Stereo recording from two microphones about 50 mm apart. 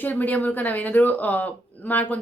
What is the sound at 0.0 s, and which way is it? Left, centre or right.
A woman's voice, left.